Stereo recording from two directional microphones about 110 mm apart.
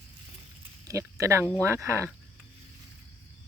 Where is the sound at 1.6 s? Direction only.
25° right (ahead or behind).